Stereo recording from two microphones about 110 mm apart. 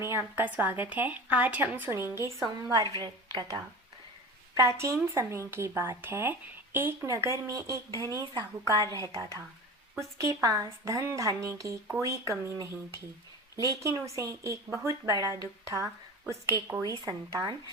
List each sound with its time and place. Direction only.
0.1 s a woman's voice: 20° right (ahead or behind); by 3.6 s 40° right (ahead or behind)
4.5 s a woman's voice: 25° right (ahead or behind)